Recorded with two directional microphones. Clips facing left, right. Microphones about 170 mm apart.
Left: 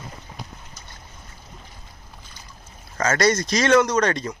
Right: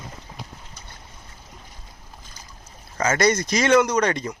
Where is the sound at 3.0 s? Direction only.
10° right (ahead or behind).